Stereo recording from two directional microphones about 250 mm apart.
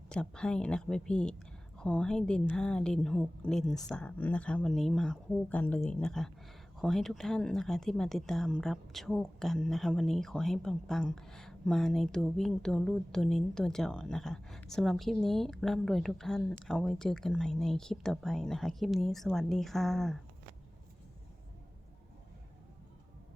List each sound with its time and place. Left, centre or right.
0.1 s speech: centre